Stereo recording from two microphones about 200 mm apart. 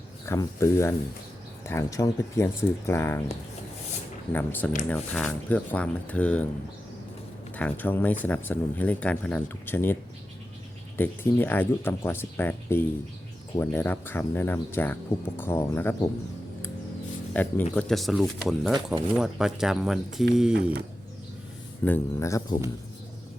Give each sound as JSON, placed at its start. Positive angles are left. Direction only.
{"t": 0.3, "sound": "speech", "side_deg": 15}
{"t": 4.3, "sound": "speech", "side_deg": 10}
{"t": 7.5, "sound": "speech", "side_deg": 10}
{"t": 17.3, "sound": "speech", "side_deg": 10}
{"t": 21.8, "sound": "speech", "side_deg": 10}